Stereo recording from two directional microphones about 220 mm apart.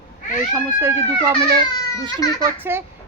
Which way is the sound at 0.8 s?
15° right (ahead or behind).